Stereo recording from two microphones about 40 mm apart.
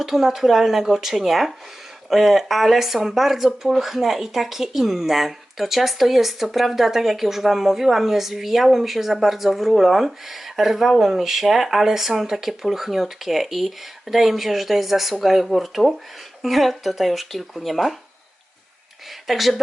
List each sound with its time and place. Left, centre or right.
0.0 s speech: centre
19.3 s speech: centre